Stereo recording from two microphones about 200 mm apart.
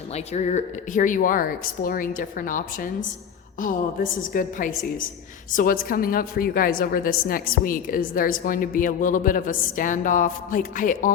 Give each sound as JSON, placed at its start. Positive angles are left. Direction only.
{"t": 0.1, "sound": "a woman's voice", "side_deg": 35}
{"t": 4.1, "sound": "a woman's voice", "side_deg": 45}